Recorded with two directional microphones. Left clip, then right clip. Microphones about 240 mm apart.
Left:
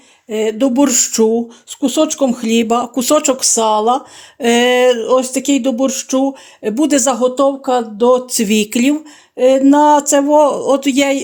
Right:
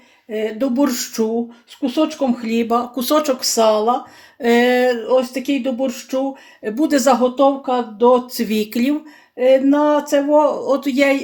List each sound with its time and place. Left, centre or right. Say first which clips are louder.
0.3 s speech: left 5 dB; left